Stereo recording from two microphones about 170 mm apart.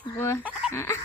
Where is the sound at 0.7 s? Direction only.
15° left (ahead or behind).